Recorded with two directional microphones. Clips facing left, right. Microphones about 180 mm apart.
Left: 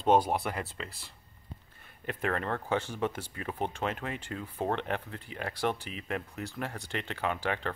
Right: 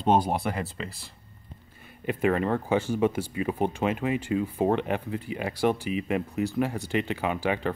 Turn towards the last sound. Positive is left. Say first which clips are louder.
# right 5 dB
turn(degrees=-10)  # may be behind; listen again after turning